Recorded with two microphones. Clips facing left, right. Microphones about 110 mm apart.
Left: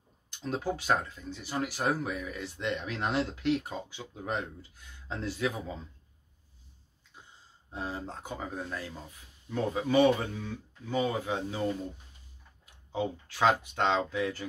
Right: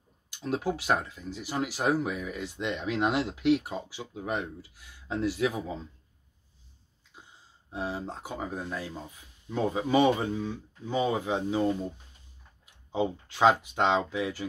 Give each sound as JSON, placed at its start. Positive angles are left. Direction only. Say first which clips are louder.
{"t": 0.5, "sound": "speech", "louder": "right 2 dB", "side_deg": -10}
{"t": 7.7, "sound": "speech", "louder": "right 3 dB", "side_deg": -15}
{"t": 12.9, "sound": "speech", "louder": "right 3 dB", "side_deg": -20}